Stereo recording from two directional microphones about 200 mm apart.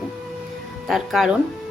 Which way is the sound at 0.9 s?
Centre (ahead or behind).